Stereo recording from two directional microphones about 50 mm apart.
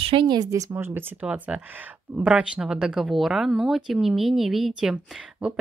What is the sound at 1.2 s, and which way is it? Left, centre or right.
Speech, right.